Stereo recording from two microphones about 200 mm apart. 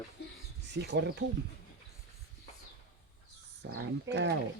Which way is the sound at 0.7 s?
60° right (ahead or behind).